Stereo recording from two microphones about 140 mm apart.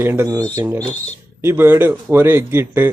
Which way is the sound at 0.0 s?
15° right (ahead or behind).